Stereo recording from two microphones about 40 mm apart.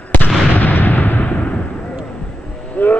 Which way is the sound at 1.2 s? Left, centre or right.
Left.